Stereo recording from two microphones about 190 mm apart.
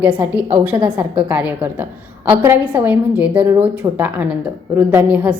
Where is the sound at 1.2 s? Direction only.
10° right (ahead or behind).